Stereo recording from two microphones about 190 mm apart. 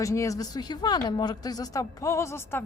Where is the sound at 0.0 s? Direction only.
15° left (ahead or behind).